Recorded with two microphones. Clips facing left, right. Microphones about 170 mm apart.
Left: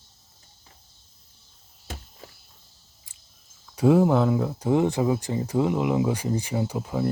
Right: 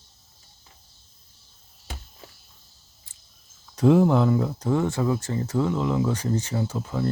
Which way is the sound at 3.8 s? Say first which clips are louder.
Even; 5° left (ahead or behind).